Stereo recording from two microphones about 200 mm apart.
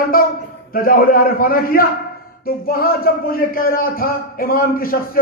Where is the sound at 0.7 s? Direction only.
45° left (ahead or behind).